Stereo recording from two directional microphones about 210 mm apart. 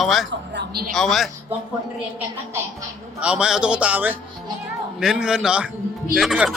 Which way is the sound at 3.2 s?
5° right (ahead or behind).